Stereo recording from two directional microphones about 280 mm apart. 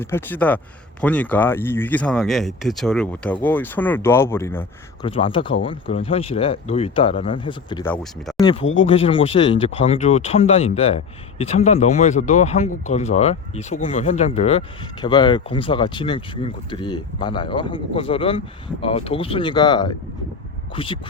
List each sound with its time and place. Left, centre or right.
0.0 s speech: centre
8.6 s speech: left
8.9 s speech: centre